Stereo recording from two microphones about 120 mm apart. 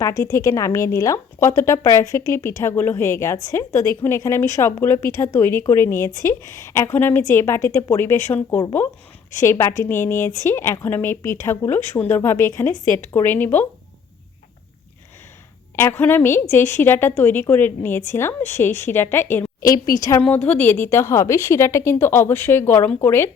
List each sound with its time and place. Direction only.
0.0 s a woman's voice: 25° left (ahead or behind)
15.7 s a woman's voice: 20° left (ahead or behind)
19.7 s a woman's voice: 30° left (ahead or behind)
20.2 s a woman's voice: 10° left (ahead or behind)